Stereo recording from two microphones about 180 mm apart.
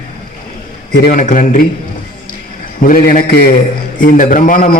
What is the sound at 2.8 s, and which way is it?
A woman's voice, 50° left (ahead or behind).